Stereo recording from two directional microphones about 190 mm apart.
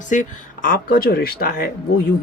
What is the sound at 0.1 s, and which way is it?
Speech, 45° left (ahead or behind).